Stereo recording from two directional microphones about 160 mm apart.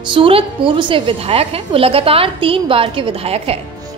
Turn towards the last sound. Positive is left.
turn(degrees=-40)  # may be behind; listen again after turning